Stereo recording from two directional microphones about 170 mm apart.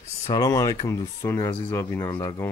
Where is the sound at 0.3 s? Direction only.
20° left (ahead or behind).